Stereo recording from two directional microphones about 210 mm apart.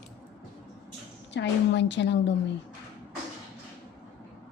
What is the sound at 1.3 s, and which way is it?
A woman's voice, 55° left (ahead or behind).